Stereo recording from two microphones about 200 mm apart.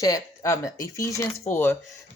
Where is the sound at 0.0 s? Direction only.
15° left (ahead or behind).